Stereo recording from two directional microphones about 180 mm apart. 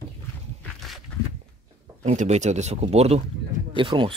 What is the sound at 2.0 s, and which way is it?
Speech, 40° right (ahead or behind).